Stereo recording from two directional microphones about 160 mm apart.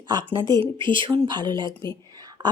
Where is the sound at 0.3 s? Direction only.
25° right (ahead or behind).